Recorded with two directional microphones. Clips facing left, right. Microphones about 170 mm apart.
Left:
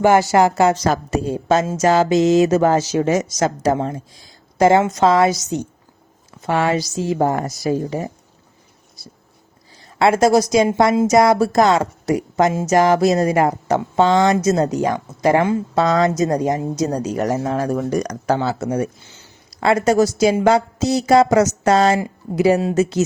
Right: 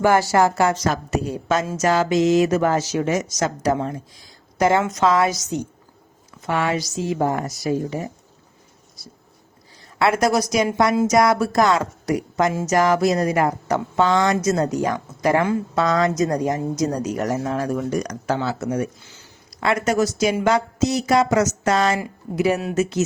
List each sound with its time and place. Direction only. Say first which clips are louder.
0.0 s a woman's voice: left 3 dB; 20° left (ahead or behind)
10.0 s a woman's voice: left 5 dB; 25° left (ahead or behind)